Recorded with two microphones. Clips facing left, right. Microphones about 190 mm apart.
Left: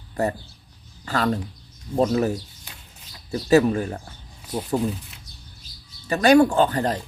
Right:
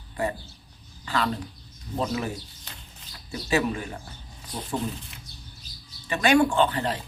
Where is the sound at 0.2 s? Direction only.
45° left (ahead or behind).